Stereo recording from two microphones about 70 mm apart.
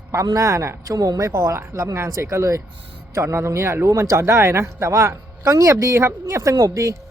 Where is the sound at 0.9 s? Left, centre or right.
Right.